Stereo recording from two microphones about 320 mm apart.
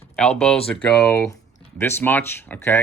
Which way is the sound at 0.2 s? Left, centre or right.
Centre.